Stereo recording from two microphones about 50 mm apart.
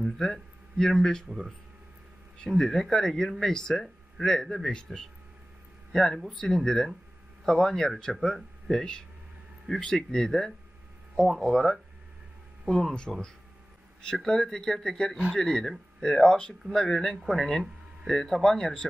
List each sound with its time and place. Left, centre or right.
0.0 s a sound: centre
1.3 s speech: centre
2.5 s speech: centre
6.4 s speech: centre
14.1 s speech: centre